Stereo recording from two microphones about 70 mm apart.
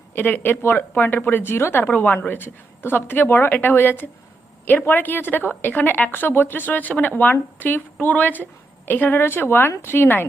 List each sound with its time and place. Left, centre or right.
0.1 s a woman's voice: left